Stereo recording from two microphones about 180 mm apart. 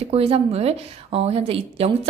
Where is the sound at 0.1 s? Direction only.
35° right (ahead or behind).